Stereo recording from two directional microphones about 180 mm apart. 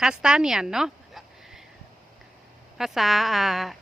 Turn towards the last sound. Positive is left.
turn(degrees=0)  # may be behind; listen again after turning